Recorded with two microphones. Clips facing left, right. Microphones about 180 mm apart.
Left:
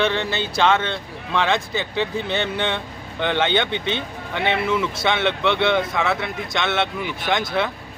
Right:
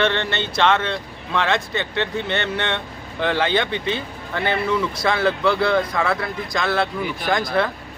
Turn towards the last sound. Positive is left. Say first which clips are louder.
# right 2 dB
turn(degrees=0)  # may be behind; listen again after turning